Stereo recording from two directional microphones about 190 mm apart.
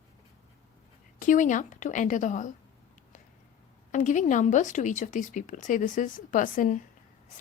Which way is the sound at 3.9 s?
40° left (ahead or behind).